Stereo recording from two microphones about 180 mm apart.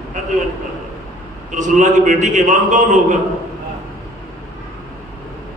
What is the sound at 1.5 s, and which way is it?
A man's voice, 45° right (ahead or behind).